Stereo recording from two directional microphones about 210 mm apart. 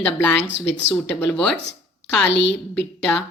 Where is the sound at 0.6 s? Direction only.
60° left (ahead or behind).